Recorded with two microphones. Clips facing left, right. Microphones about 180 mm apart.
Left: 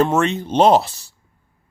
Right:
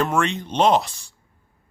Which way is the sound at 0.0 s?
35° left (ahead or behind).